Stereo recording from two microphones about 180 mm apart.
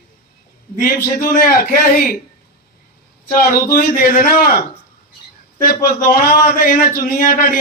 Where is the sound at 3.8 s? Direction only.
50° left (ahead or behind).